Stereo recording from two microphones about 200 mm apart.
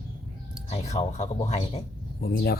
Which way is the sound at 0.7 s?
35° left (ahead or behind).